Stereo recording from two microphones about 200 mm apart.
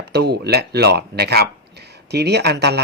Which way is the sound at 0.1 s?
55° right (ahead or behind).